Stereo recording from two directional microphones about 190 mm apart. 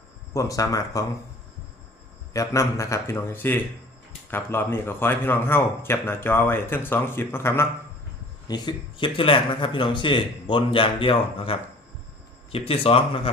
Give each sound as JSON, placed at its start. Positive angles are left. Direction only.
{"t": 0.3, "sound": "a man's voice", "side_deg": 15}
{"t": 2.3, "sound": "a man's voice", "side_deg": 15}